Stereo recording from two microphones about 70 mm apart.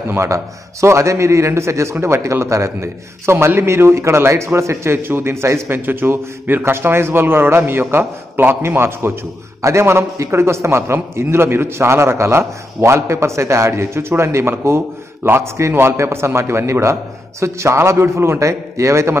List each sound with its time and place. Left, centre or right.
0.1 s a man's voice: right